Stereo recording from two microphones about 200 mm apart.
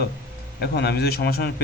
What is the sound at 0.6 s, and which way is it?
Speech, 55° left (ahead or behind).